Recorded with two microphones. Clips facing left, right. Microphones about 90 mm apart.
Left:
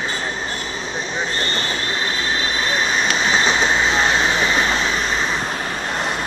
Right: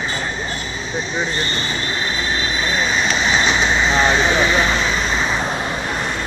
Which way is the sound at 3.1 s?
40° left (ahead or behind).